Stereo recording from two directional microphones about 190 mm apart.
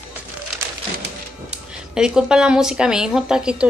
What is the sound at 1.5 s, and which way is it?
Speech, 5° right (ahead or behind).